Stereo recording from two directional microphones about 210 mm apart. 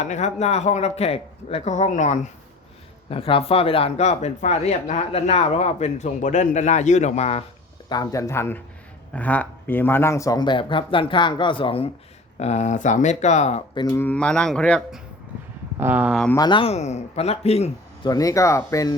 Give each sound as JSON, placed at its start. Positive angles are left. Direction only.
{"t": 0.0, "sound": "speech", "side_deg": 35}
{"t": 7.9, "sound": "speech", "side_deg": 15}
{"t": 13.7, "sound": "speech", "side_deg": 15}
{"t": 15.8, "sound": "speech", "side_deg": -10}
{"t": 16.1, "sound": "speech", "side_deg": 5}
{"t": 16.4, "sound": "speech", "side_deg": 25}
{"t": 18.1, "sound": "speech", "side_deg": 15}